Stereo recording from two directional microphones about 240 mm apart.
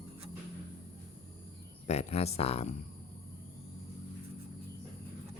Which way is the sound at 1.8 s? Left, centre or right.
Left.